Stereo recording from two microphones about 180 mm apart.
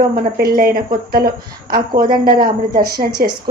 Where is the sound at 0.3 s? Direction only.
55° right (ahead or behind).